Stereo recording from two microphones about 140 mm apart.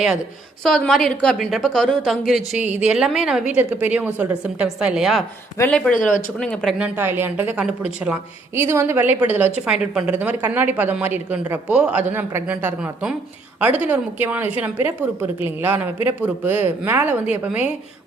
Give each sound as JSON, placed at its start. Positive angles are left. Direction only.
{"t": 0.6, "sound": "a woman's voice", "side_deg": 0}
{"t": 5.5, "sound": "speech", "side_deg": 10}
{"t": 5.9, "sound": "speech", "side_deg": 70}
{"t": 6.4, "sound": "a woman's voice", "side_deg": 5}
{"t": 6.7, "sound": "speech", "side_deg": -10}